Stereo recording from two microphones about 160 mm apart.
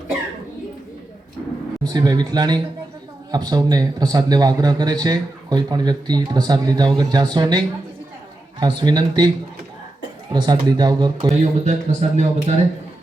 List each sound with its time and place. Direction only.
1.8 s a man's voice: 25° right (ahead or behind)
10.3 s a man's voice: 25° right (ahead or behind)
11.3 s speech: 45° right (ahead or behind)